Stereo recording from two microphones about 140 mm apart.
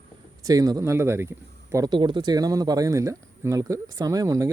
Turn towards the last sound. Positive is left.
turn(degrees=-25)  # may be behind; listen again after turning